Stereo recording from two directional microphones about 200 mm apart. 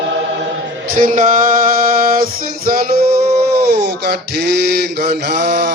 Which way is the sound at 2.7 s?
45° right (ahead or behind).